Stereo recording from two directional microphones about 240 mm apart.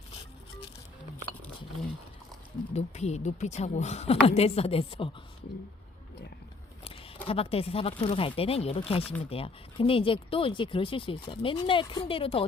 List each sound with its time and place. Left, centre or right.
2.7 s speech: left
7.3 s speech: left